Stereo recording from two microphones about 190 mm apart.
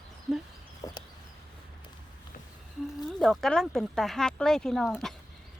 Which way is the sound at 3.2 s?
Centre (ahead or behind).